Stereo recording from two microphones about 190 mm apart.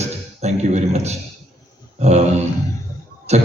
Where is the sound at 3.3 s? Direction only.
35° right (ahead or behind).